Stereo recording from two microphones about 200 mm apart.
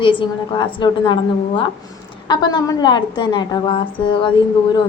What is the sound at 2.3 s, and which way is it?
A woman's voice, 20° left (ahead or behind).